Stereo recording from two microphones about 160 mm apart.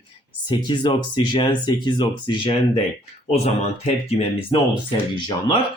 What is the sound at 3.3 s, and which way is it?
Speech, 40° left (ahead or behind).